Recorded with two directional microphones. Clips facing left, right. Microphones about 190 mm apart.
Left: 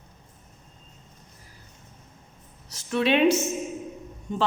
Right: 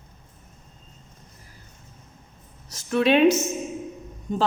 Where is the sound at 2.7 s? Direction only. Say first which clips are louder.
Right 3 dB; 45° right (ahead or behind).